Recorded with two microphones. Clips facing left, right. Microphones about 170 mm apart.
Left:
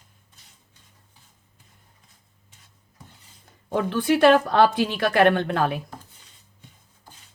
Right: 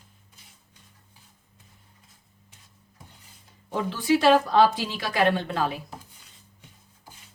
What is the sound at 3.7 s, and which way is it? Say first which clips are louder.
Speech: left 2 dB; 60° left (ahead or behind).